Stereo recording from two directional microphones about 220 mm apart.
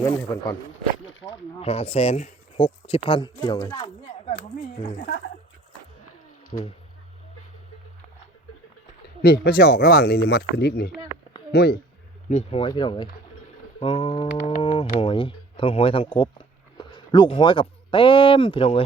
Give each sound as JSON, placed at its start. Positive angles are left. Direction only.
{"t": 0.0, "sound": "speech", "side_deg": 10}
{"t": 1.6, "sound": "speech", "side_deg": 30}
{"t": 4.3, "sound": "speech", "side_deg": 30}
{"t": 6.5, "sound": "speech", "side_deg": 30}
{"t": 9.2, "sound": "speech", "side_deg": 45}
{"t": 12.3, "sound": "speech", "side_deg": 30}